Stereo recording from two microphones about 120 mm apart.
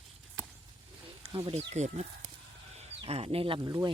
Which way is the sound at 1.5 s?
70° right (ahead or behind).